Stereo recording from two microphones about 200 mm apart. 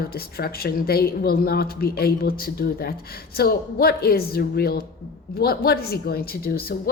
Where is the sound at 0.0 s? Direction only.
50° left (ahead or behind).